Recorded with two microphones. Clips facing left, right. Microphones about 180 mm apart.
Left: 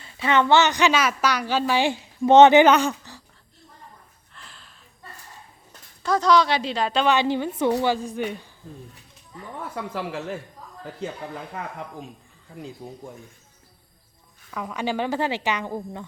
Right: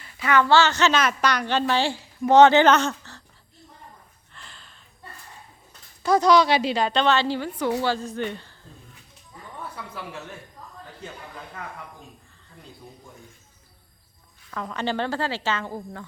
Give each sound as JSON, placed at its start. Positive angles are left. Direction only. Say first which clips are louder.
{"t": 0.0, "sound": "a woman's voice", "louder": "even", "side_deg": 25}
{"t": 4.3, "sound": "a sound", "louder": "even", "side_deg": 0}
{"t": 6.0, "sound": "a woman's voice", "louder": "right 2 dB", "side_deg": -10}
{"t": 9.9, "sound": "speech", "louder": "left 7 dB", "side_deg": 90}
{"t": 14.5, "sound": "a woman's voice", "louder": "left 1 dB", "side_deg": 10}